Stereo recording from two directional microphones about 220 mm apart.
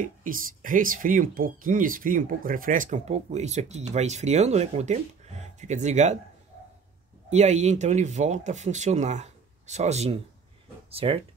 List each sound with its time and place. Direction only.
0.0 s speech: 40° right (ahead or behind)
7.2 s speech: 30° right (ahead or behind)